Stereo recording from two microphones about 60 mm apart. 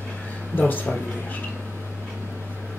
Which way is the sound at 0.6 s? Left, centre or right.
Left.